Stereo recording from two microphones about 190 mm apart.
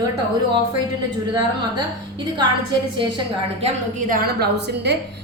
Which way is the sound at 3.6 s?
45° right (ahead or behind).